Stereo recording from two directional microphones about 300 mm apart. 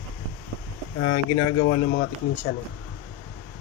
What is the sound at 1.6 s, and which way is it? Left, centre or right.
Speech, left.